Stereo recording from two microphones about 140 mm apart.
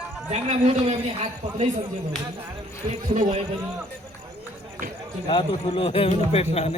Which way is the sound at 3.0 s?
60° right (ahead or behind).